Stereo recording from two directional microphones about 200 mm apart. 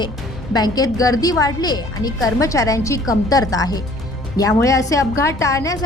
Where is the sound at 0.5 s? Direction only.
20° left (ahead or behind).